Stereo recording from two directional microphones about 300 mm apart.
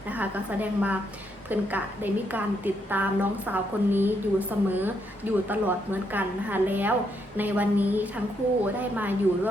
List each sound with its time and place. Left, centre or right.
0.1 s a woman's voice: centre